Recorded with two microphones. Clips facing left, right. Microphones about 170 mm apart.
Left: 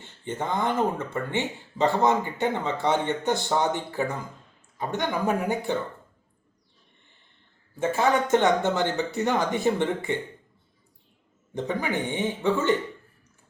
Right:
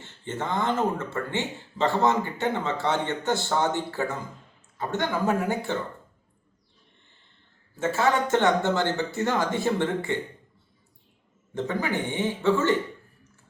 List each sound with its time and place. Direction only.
0.0 s speech: 15° left (ahead or behind)
7.8 s speech: 15° left (ahead or behind)
11.5 s speech: 15° left (ahead or behind)